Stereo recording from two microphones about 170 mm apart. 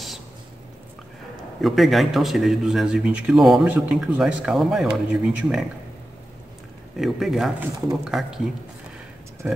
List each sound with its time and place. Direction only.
1.6 s speech: centre (ahead or behind)
7.0 s speech: centre (ahead or behind)